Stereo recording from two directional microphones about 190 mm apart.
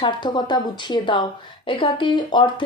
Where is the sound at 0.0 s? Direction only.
25° left (ahead or behind).